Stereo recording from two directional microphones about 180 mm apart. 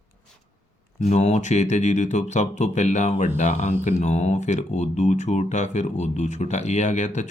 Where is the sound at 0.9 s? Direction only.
40° left (ahead or behind).